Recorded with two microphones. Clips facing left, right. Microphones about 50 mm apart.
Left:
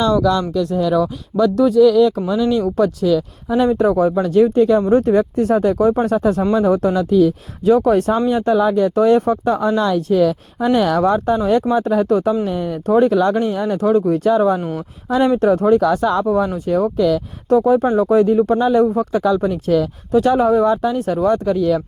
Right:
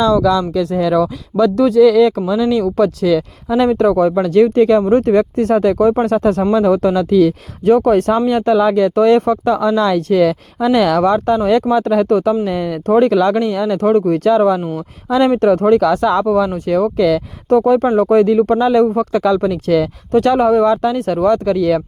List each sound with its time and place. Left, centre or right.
1.5 s speech: right
3.5 s speech: right
4.9 s speech: right
7.6 s speech: right
12.5 s speech: right
12.8 s speech: right
13.7 s speech: right
14.3 s speech: right
15.8 s speech: right
16.6 s speech: right
17.5 s speech: right
20.1 s speech: right
21.0 s speech: right